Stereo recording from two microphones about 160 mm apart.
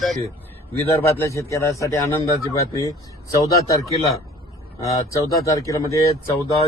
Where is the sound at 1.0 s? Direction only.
15° left (ahead or behind).